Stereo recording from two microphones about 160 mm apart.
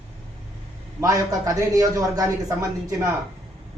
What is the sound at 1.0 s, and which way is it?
Speech, 20° right (ahead or behind).